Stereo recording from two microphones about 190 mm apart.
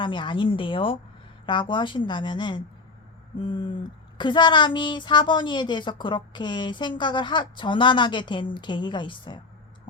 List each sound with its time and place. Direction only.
0.0 s speech: 25° left (ahead or behind)